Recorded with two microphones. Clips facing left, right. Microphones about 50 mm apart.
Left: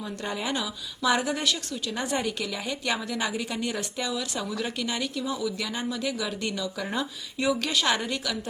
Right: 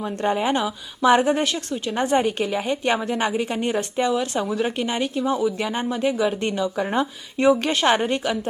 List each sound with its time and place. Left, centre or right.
0.0 s speech: right